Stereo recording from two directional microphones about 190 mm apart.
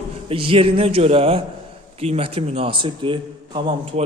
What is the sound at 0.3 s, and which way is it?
A man's voice, 30° right (ahead or behind).